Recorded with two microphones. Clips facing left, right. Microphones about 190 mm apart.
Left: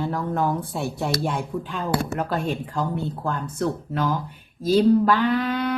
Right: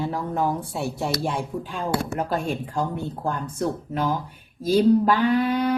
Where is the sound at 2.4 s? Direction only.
10° right (ahead or behind).